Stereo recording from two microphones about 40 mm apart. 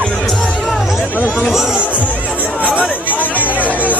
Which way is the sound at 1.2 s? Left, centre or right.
Left.